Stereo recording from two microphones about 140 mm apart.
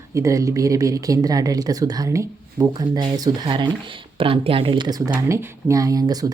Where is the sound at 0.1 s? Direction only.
20° right (ahead or behind).